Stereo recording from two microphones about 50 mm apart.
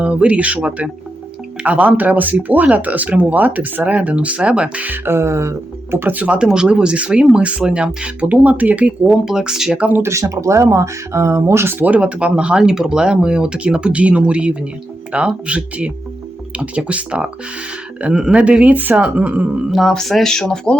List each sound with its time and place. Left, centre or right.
0.0 s speech: right
5.0 s speech: right
6.0 s speech: right
6.2 s speech: right
9.2 s speech: centre
9.7 s speech: right
10.0 s speech: right
11.7 s speech: right
12.6 s speech: centre; by 19.6 s right
19.9 s speech: centre